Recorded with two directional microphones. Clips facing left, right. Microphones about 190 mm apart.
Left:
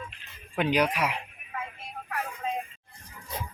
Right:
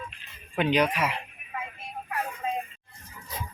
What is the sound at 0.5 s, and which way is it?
Speech, 10° left (ahead or behind).